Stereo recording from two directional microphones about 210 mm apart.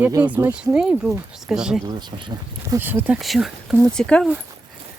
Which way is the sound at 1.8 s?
20° right (ahead or behind).